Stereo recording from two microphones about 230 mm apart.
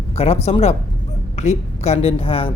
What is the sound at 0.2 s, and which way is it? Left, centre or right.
Speech, left.